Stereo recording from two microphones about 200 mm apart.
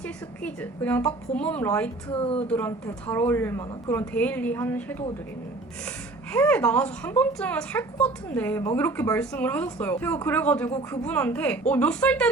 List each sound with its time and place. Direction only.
0.4 s a woman's voice: 10° left (ahead or behind)
2.0 s speech: 25° left (ahead or behind)
2.5 s a woman's voice: 10° left (ahead or behind)
6.3 s a woman's voice: 5° left (ahead or behind)
10.7 s speech: 20° left (ahead or behind)
11.0 s a woman's voice: 10° left (ahead or behind)